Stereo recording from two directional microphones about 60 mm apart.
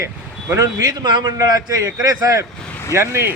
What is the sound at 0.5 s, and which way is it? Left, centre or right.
A man's voice, right.